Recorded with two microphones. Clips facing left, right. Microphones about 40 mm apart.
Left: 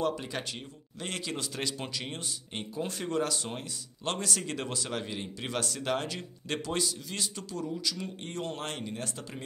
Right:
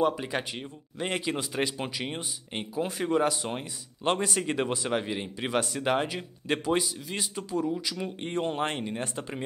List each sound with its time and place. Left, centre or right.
0.0 s speech: centre